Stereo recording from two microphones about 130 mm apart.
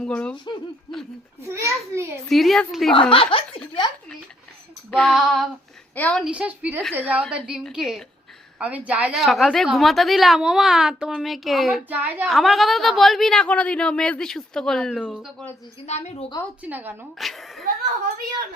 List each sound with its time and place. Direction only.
0.0 s speech: 10° left (ahead or behind)
0.3 s speech: 35° left (ahead or behind)
1.4 s a child's voice: 20° right (ahead or behind)
2.3 s a woman's voice: centre (ahead or behind)
2.9 s speech: 40° left (ahead or behind)
3.8 s speech: 35° left (ahead or behind)
4.9 s a woman's voice: 5° left (ahead or behind)
6.2 s a woman's voice: 10° right (ahead or behind)
9.1 s a woman's voice: centre (ahead or behind)
11.9 s a woman's voice: 15° right (ahead or behind)
12.2 s a woman's voice: centre (ahead or behind)
15.9 s a woman's voice: 60° left (ahead or behind)
16.6 s a woman's voice: 15° right (ahead or behind)
17.2 s a woman's voice: centre (ahead or behind)